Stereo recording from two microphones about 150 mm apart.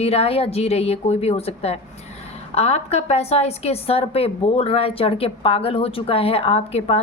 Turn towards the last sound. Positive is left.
turn(degrees=45)  # may be behind; listen again after turning